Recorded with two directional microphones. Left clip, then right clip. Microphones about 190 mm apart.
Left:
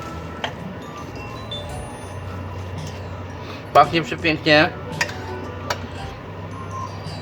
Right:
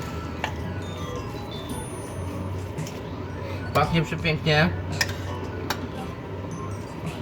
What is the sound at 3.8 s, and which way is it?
Speech, 55° left (ahead or behind).